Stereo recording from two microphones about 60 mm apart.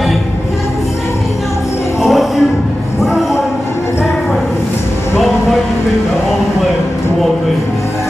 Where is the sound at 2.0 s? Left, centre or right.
Centre.